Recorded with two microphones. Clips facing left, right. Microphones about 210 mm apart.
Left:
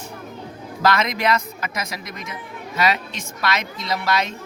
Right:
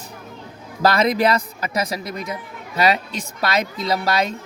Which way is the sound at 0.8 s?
35° right (ahead or behind).